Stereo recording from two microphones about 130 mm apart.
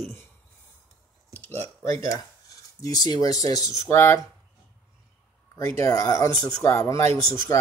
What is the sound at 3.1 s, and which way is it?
Speech, 25° left (ahead or behind).